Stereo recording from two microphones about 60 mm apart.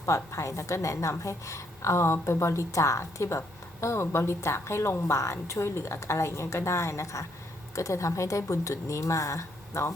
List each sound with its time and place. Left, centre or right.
0.0 s a woman's voice: left